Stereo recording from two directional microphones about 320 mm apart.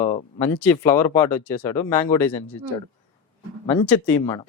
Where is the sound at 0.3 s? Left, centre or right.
Centre.